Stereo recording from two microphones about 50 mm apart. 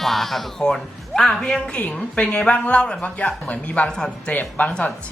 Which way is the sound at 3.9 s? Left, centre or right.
Centre.